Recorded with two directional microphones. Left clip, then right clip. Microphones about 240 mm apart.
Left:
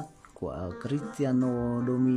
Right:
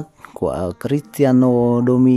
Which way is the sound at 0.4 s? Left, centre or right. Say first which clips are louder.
Right 14 dB; right.